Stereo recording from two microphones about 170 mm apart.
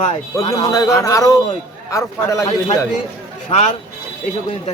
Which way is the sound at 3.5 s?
40° left (ahead or behind).